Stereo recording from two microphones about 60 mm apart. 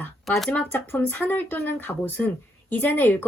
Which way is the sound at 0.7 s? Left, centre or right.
Left.